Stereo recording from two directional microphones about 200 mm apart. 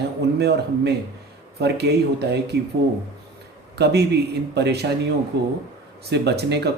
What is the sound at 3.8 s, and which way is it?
Speech, 55° right (ahead or behind).